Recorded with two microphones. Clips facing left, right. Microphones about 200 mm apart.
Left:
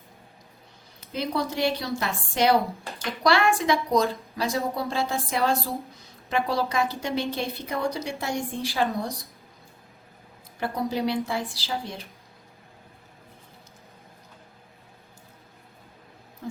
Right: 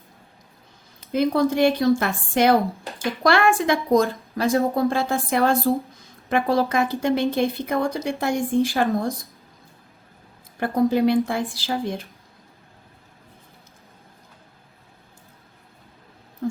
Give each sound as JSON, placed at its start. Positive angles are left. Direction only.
{"t": 1.1, "sound": "a woman's voice", "side_deg": -50}
{"t": 10.6, "sound": "a woman's voice", "side_deg": -50}
{"t": 16.4, "sound": "owl", "side_deg": -50}